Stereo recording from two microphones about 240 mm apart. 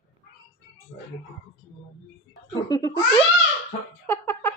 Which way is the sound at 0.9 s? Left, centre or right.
Centre.